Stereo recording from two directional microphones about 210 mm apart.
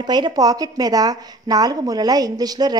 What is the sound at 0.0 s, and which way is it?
A woman's voice, 20° right (ahead or behind).